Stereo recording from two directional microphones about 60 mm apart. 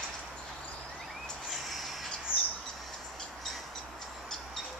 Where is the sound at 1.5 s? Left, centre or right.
Centre.